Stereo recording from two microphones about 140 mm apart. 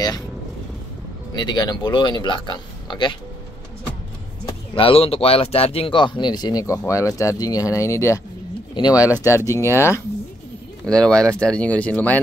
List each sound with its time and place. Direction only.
1.3 s speech: 30° left (ahead or behind)
4.7 s speech: 40° left (ahead or behind); by 10.0 s 20° left (ahead or behind)
10.9 s speech: 5° left (ahead or behind)